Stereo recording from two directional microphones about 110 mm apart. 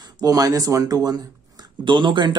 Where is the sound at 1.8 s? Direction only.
45° right (ahead or behind).